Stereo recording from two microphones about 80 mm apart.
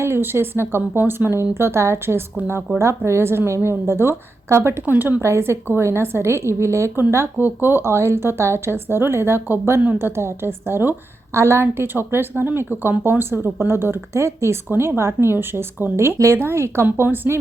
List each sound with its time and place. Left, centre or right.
0.0 s speech: right
5.2 s a woman's voice: right